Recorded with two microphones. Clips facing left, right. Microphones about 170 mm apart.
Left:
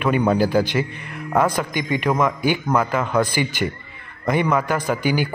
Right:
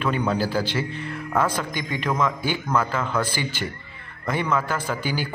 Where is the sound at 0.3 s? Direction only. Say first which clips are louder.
Left 6 dB; 15° left (ahead or behind).